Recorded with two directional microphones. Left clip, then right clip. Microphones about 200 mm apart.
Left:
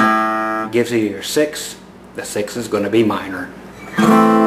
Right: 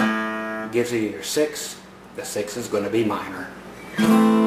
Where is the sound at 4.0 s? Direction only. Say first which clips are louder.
Left 7 dB; 5° left (ahead or behind).